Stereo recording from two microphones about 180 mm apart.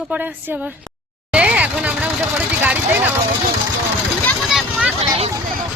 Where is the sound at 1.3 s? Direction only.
5° right (ahead or behind).